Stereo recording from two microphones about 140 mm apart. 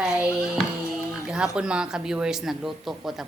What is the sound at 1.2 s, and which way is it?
A man's voice, 5° right (ahead or behind).